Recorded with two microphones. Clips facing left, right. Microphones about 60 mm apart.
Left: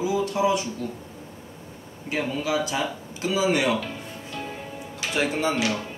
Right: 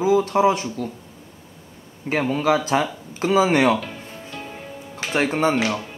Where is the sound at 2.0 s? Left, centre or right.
Right.